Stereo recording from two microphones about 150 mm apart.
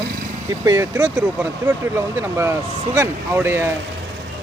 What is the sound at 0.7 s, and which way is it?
Speech, 20° right (ahead or behind).